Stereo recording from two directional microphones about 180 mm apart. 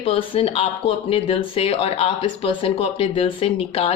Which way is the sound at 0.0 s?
30° left (ahead or behind).